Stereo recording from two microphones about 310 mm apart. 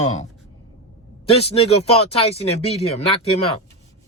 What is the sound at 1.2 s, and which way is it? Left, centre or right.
Speech, centre.